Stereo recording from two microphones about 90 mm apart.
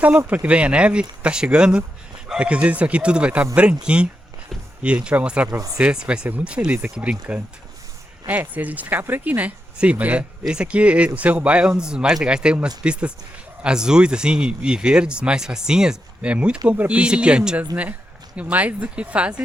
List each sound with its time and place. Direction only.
0.3 s speech: 15° right (ahead or behind)
5.5 s speech: 40° right (ahead or behind)
5.7 s speech: 10° right (ahead or behind)